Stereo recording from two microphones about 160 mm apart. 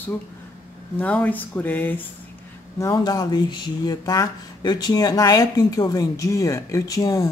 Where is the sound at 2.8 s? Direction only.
25° left (ahead or behind).